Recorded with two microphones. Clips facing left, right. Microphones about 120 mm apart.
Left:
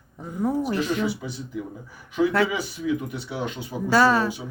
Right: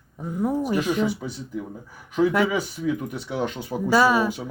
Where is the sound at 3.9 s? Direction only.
10° right (ahead or behind).